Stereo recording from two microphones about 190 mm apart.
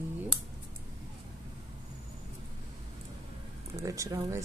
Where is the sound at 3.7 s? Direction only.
15° right (ahead or behind).